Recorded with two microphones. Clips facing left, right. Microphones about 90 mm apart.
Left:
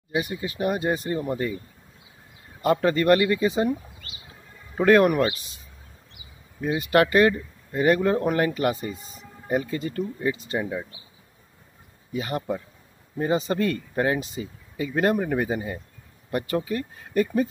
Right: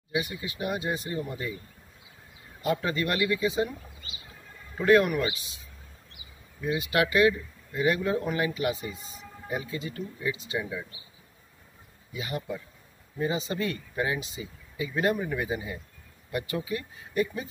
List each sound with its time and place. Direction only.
0.1 s speech: 40° left (ahead or behind)
2.6 s speech: 45° left (ahead or behind)
4.7 s speech: 50° left (ahead or behind)
6.6 s speech: 45° left (ahead or behind)
12.1 s speech: 45° left (ahead or behind)